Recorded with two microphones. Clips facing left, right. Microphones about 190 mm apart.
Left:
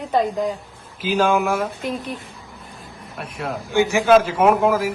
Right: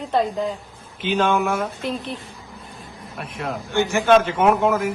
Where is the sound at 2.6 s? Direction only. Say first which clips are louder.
Even; centre (ahead or behind).